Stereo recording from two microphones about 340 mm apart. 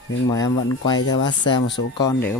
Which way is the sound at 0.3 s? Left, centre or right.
Centre.